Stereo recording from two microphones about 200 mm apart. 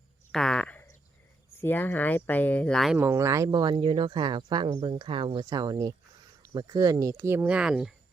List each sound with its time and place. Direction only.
0.3 s a sound: 5° left (ahead or behind)
1.6 s speech: 10° left (ahead or behind)
3.0 s speech: 15° right (ahead or behind)